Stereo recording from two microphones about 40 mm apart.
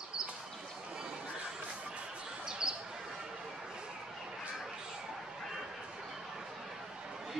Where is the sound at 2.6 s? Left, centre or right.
Centre.